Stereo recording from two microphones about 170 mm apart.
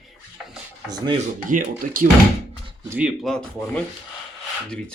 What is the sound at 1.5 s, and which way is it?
Speech, 55° right (ahead or behind).